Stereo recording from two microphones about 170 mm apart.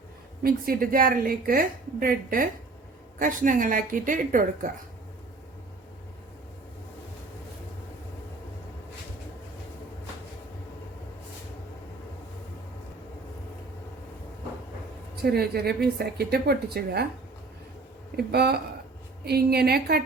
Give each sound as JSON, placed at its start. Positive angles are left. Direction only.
{"t": 0.4, "sound": "a woman's voice", "side_deg": -60}
{"t": 15.2, "sound": "a woman's voice", "side_deg": -70}
{"t": 18.2, "sound": "a woman's voice", "side_deg": -70}